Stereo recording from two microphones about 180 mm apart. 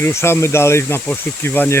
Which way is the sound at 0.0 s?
15° left (ahead or behind).